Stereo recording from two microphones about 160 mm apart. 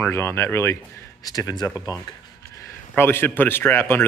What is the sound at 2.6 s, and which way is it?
A man's voice, 15° left (ahead or behind).